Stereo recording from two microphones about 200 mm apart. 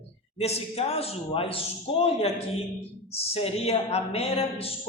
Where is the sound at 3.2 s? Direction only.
30° left (ahead or behind).